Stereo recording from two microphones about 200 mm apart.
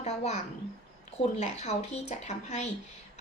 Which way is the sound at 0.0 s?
35° left (ahead or behind).